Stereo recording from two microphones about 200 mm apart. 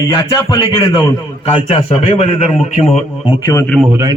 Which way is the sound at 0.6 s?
20° left (ahead or behind).